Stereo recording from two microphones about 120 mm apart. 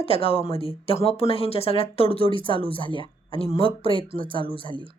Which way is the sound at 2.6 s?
45° left (ahead or behind).